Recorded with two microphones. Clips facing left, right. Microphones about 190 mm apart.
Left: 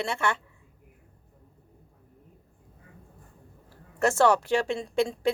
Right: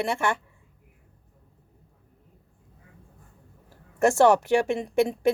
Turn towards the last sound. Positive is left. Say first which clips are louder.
# right 3 dB
turn(degrees=-20)  # may be behind; listen again after turning